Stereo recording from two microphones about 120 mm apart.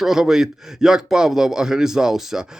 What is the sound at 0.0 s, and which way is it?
A man's voice, 5° right (ahead or behind).